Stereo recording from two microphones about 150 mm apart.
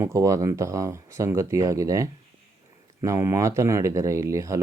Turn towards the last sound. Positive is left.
turn(degrees=-20)  # may be behind; listen again after turning